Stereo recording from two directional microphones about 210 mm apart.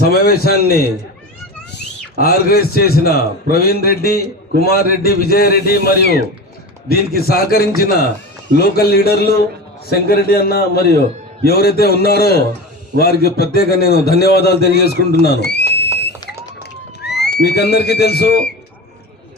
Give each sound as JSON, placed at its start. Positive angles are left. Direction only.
{"t": 0.1, "sound": "a man's voice", "side_deg": 45}
{"t": 15.2, "sound": "a sound", "side_deg": 50}
{"t": 17.4, "sound": "a man's voice", "side_deg": 50}